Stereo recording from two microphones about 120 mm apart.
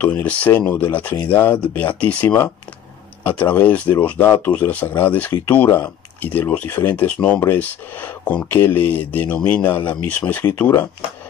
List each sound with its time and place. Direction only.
0.0 s speech: 10° left (ahead or behind)